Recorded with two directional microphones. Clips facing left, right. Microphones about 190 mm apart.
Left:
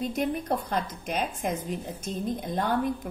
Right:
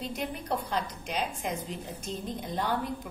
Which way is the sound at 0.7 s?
50° left (ahead or behind).